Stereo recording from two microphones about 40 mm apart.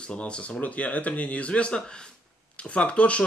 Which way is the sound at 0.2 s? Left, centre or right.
Left.